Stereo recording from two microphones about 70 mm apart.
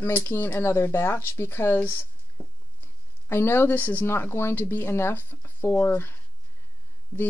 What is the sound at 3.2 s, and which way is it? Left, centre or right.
Speech, left.